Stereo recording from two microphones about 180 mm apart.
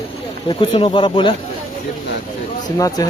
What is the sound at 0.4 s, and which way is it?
Speech, 30° left (ahead or behind).